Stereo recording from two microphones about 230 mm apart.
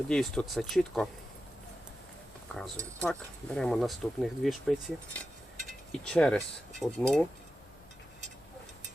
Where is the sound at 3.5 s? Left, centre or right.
Centre.